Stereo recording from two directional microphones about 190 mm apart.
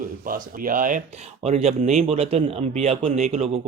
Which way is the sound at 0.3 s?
45° right (ahead or behind).